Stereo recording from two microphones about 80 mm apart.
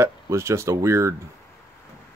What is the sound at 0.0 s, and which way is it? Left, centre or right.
Speech, right.